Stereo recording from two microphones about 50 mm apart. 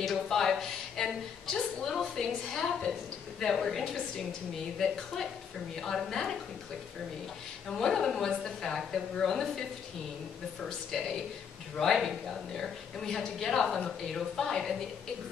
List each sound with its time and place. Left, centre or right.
0.0 s a woman's voice: centre
7.7 s a woman's voice: centre